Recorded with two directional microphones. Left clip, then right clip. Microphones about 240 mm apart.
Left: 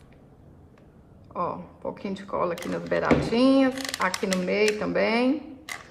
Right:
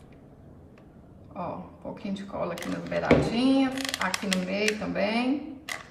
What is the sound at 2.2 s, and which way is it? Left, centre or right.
Speech, left.